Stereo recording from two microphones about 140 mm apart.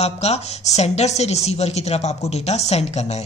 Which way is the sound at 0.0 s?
50° left (ahead or behind).